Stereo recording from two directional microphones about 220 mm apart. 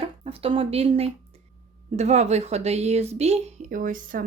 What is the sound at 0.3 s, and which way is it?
A woman's voice, 25° right (ahead or behind).